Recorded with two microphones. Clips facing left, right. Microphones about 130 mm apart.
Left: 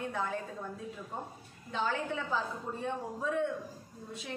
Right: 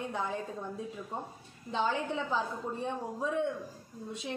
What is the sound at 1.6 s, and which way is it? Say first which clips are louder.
A woman's voice: right 2 dB; 20° right (ahead or behind).